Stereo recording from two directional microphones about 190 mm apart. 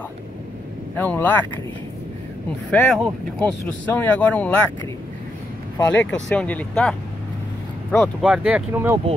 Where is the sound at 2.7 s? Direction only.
5° left (ahead or behind).